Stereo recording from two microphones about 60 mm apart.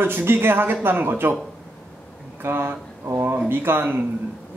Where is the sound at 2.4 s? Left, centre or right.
Right.